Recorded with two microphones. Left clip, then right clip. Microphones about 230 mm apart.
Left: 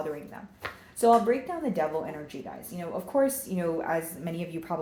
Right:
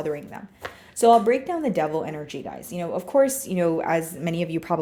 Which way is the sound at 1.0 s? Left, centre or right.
Right.